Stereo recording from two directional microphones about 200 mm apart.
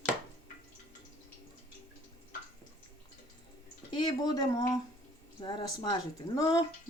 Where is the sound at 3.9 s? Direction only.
20° left (ahead or behind).